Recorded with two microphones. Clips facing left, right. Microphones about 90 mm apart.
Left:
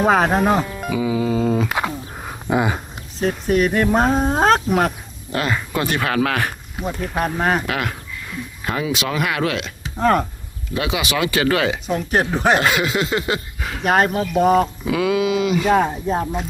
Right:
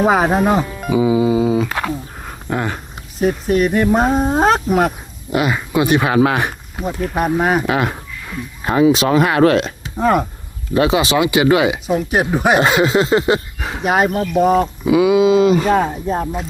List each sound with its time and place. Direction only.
0.0 s speech: 5° right (ahead or behind)
0.9 s a sound: 20° right (ahead or behind); by 1.7 s 5° right (ahead or behind)
2.2 s a sound: 10° left (ahead or behind)
3.2 s speech: 5° right (ahead or behind); by 6.8 s 20° right (ahead or behind)
6.8 s speech: centre (ahead or behind)
7.7 s speech: 25° right (ahead or behind); by 9.7 s 40° right (ahead or behind)
10.0 s speech: 5° right (ahead or behind)
10.8 s speech: 35° right (ahead or behind)
11.2 s speech: 20° right (ahead or behind)
12.5 s speech: 25° right (ahead or behind)
13.8 s speech: 5° right (ahead or behind)
14.8 s speech: 15° right (ahead or behind); by 15.7 s 40° right (ahead or behind)
15.7 s speech: centre (ahead or behind)